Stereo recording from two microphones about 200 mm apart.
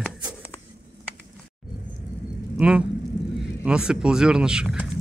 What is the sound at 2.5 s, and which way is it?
Speech, 5° right (ahead or behind).